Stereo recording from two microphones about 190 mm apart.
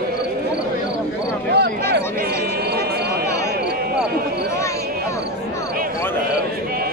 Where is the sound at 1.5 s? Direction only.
60° right (ahead or behind).